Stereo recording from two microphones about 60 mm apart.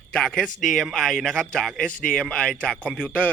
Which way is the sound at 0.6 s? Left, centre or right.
Centre.